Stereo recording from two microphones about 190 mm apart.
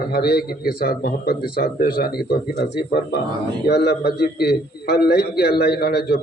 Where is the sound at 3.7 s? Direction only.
60° left (ahead or behind).